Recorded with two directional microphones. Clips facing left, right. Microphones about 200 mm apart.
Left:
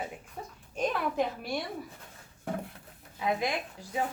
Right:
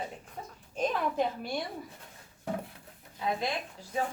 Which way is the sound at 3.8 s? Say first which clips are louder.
Left 2 dB; 15° left (ahead or behind).